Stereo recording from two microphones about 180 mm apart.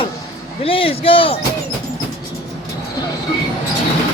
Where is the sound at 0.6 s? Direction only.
30° left (ahead or behind).